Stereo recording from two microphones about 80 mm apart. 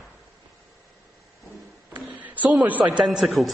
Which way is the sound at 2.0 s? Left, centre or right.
Centre.